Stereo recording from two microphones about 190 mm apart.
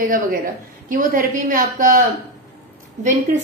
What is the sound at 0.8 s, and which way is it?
A woman's voice, 45° right (ahead or behind).